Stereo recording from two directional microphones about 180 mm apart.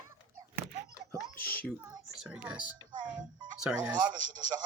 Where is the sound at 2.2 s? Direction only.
5° right (ahead or behind).